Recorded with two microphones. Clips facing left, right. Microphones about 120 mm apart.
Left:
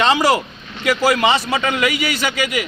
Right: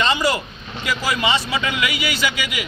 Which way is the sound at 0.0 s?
90° left.